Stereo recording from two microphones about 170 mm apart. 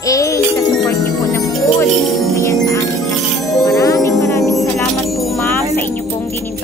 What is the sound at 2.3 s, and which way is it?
Jingle bell, 15° left (ahead or behind).